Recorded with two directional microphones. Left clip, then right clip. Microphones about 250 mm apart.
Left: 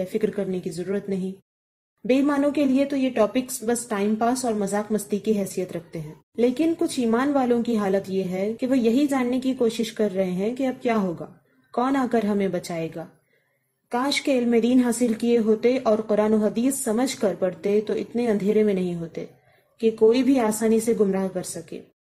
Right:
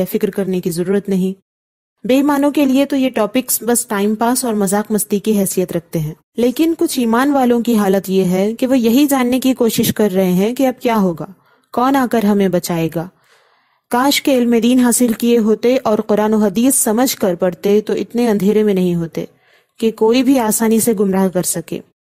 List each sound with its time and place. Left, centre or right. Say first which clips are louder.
0.2 s speech: right 8 dB; right